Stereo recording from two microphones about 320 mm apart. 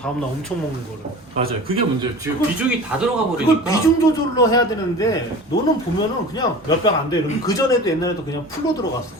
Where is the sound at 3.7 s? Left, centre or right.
Centre.